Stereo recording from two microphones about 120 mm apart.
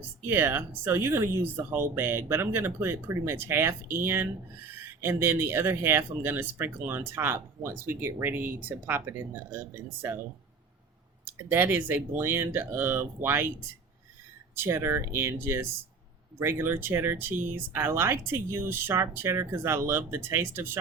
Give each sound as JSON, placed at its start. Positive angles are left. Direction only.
{"t": 0.3, "sound": "speech", "side_deg": -20}
{"t": 11.3, "sound": "speech", "side_deg": -15}
{"t": 14.5, "sound": "speech", "side_deg": -20}